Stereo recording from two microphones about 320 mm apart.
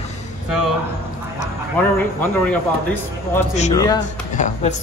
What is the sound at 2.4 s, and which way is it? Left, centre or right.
A man's voice, centre.